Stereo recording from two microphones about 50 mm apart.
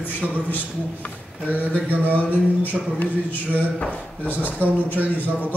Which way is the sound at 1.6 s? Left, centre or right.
Right.